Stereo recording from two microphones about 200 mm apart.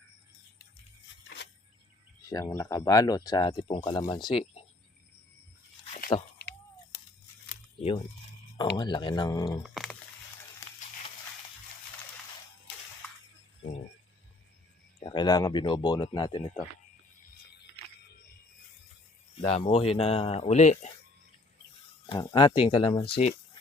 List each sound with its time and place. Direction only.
1.4 s cricket: 60° left (ahead or behind)
2.3 s speech: 15° left (ahead or behind)
6.1 s speech: 25° left (ahead or behind)
7.5 s camera: 30° left (ahead or behind)
8.7 s speech: 25° left (ahead or behind)
9.6 s a sound: centre (ahead or behind)
15.0 s speech: 20° left (ahead or behind)
19.4 s speech: 35° left (ahead or behind)
22.1 s speech: 20° left (ahead or behind)